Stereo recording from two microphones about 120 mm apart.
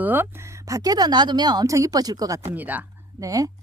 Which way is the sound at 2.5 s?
15° right (ahead or behind).